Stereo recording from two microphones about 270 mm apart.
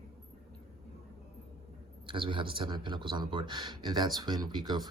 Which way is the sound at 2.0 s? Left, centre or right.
Centre.